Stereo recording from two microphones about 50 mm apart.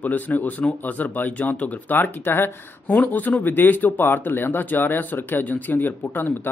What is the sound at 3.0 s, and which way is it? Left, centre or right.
Speech, left.